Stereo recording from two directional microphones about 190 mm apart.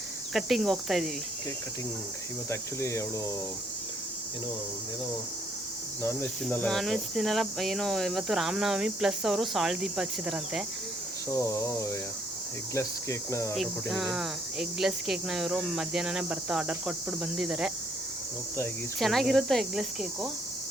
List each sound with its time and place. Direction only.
0.3 s speech: centre (ahead or behind)
2.5 s speech: 15° left (ahead or behind)
6.0 s speech: 10° left (ahead or behind)
11.3 s speech: 15° left (ahead or behind)
13.6 s speech: centre (ahead or behind)
18.9 s speech: centre (ahead or behind)